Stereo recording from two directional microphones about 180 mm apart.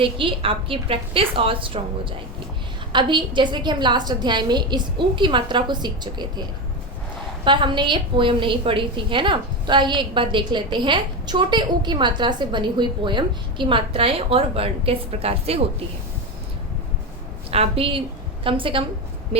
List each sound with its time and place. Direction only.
0.0 s a woman's voice: 30° right (ahead or behind)
2.9 s a woman's voice: 25° right (ahead or behind)
7.4 s a woman's voice: 25° right (ahead or behind)
17.5 s a woman's voice: 30° right (ahead or behind)